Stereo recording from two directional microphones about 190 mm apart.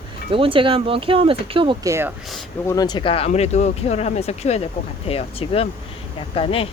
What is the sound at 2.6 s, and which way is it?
Speech, 20° left (ahead or behind).